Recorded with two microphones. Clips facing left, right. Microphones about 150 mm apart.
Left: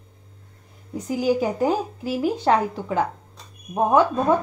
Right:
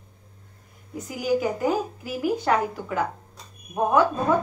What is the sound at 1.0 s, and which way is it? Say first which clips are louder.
A woman's voice: left 3 dB; 30° left (ahead or behind).